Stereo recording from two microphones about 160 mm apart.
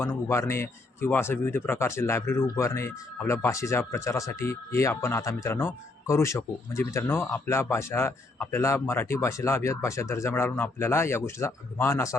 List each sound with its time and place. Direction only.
0.0 s speech: 15° left (ahead or behind)